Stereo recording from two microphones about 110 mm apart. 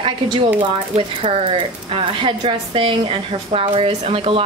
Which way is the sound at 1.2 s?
65° right (ahead or behind).